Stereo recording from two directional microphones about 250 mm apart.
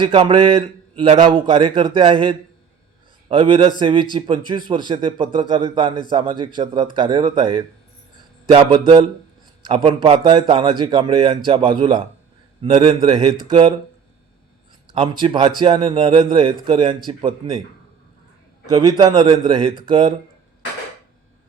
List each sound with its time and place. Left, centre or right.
0.0 s a man's voice: right
14.9 s a man's voice: right
18.7 s a man's voice: centre